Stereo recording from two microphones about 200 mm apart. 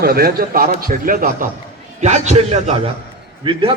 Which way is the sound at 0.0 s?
50° right (ahead or behind).